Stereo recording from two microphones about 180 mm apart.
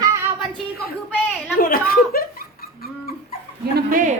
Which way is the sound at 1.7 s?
55° left (ahead or behind).